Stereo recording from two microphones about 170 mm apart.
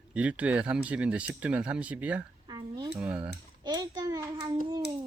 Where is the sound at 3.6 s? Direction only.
25° right (ahead or behind).